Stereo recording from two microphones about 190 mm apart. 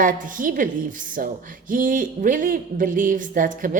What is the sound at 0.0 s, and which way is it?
A man's voice, 45° right (ahead or behind).